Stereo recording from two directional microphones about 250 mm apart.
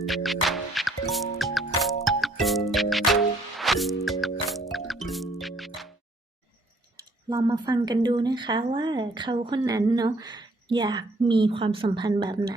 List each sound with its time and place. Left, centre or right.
0.0 s music: centre
6.9 s speech: centre